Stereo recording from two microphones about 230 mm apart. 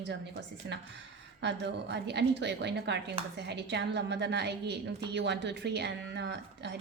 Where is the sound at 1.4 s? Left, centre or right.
Right.